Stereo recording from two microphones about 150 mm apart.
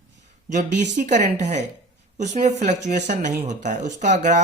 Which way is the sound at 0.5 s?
55° right (ahead or behind).